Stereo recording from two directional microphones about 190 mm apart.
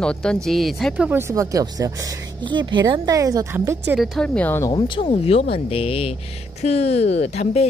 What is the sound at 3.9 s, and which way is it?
Speech, centre (ahead or behind).